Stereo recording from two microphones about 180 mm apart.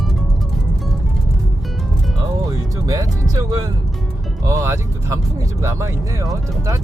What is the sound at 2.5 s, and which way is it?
Music, 20° right (ahead or behind).